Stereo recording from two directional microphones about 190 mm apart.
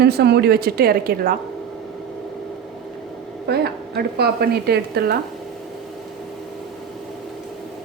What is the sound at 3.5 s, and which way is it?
A woman's voice, 55° right (ahead or behind).